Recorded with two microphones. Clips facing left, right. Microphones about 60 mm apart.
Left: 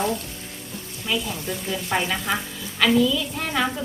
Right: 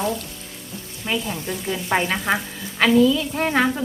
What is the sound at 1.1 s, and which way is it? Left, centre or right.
Frying, right.